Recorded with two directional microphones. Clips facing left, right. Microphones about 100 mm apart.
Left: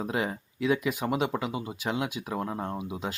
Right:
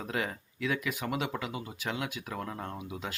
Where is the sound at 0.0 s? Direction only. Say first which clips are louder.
Left 4 dB; 20° left (ahead or behind).